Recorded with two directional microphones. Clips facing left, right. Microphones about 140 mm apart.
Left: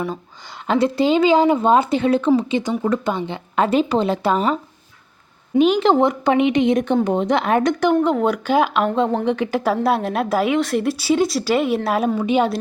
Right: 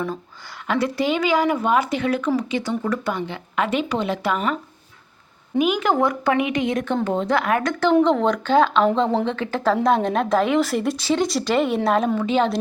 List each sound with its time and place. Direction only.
0.7 s speech: 25° left (ahead or behind)
5.5 s a woman's voice: 30° left (ahead or behind); by 12.5 s 15° left (ahead or behind)